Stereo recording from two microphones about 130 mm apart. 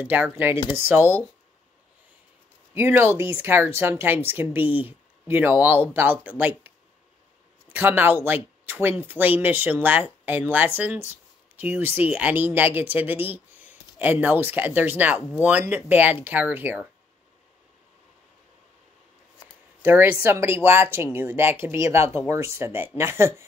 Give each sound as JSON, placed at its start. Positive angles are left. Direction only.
{"t": 0.0, "sound": "speech", "side_deg": -15}
{"t": 2.7, "sound": "speech", "side_deg": -20}
{"t": 7.7, "sound": "speech", "side_deg": -15}
{"t": 19.8, "sound": "speech", "side_deg": -20}